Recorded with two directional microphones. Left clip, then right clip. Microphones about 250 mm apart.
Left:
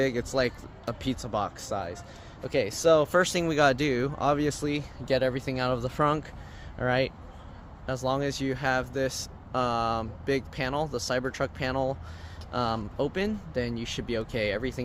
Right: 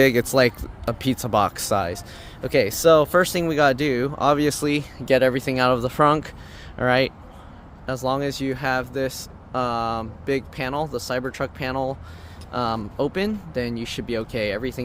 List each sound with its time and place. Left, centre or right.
0.0 s speech: right; by 7.1 s centre
7.9 s speech: centre